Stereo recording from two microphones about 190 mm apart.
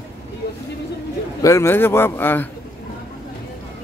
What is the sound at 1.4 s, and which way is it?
Speech, 15° left (ahead or behind).